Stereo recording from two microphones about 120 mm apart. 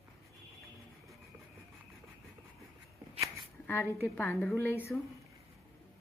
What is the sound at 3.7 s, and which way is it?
Speech, 20° left (ahead or behind).